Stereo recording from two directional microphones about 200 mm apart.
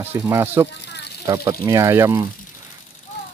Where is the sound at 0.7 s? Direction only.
60° left (ahead or behind).